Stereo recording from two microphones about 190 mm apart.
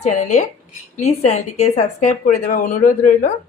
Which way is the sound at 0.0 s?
40° left (ahead or behind).